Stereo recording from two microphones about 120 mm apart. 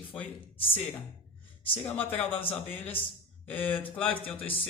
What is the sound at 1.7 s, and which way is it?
Speech, 15° left (ahead or behind).